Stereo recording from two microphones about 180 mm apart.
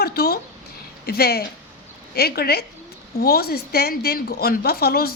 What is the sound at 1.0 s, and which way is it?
A woman's voice, 60° left (ahead or behind).